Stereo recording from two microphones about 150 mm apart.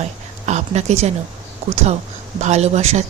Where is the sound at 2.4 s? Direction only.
50° right (ahead or behind).